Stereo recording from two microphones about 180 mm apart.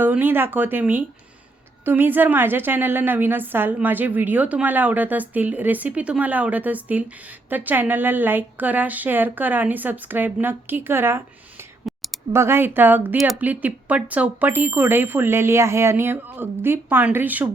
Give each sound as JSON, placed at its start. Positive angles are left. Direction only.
{"t": 0.0, "sound": "a woman's voice", "side_deg": -10}
{"t": 11.9, "sound": "clicking", "side_deg": 0}
{"t": 12.3, "sound": "a woman's voice", "side_deg": -15}